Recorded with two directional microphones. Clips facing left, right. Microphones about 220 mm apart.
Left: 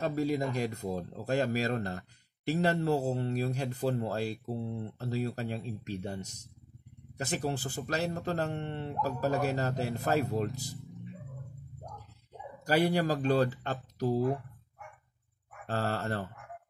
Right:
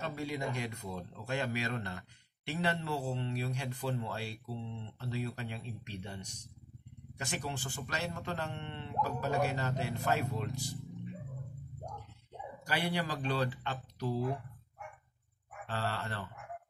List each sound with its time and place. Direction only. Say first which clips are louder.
0.0 s speech: left 7 dB; 40° left (ahead or behind)
12.6 s speech: left 8 dB; 40° left (ahead or behind)
15.6 s speech: left 5 dB; 45° left (ahead or behind)